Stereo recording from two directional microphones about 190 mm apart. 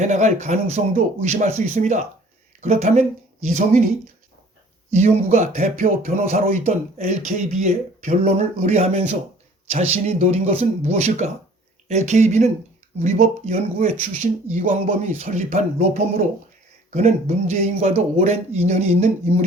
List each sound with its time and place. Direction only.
0.0 s speech: 40° right (ahead or behind)